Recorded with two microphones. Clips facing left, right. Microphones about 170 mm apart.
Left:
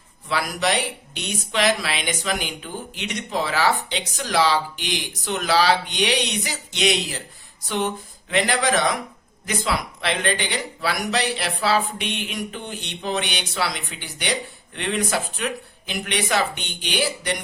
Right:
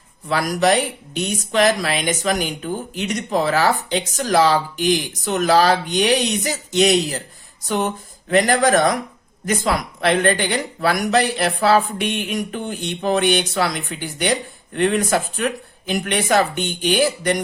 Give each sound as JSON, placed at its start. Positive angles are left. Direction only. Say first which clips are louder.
{"t": 0.3, "sound": "speech", "louder": "right 6 dB", "side_deg": -45}
{"t": 8.3, "sound": "speech", "louder": "right 6 dB", "side_deg": -45}